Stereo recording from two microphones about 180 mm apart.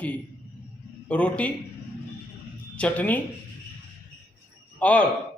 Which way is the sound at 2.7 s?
5° left (ahead or behind).